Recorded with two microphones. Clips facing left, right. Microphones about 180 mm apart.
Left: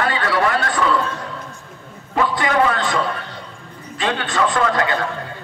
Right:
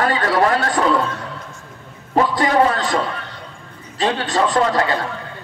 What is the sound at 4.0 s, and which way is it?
Speech, 35° right (ahead or behind).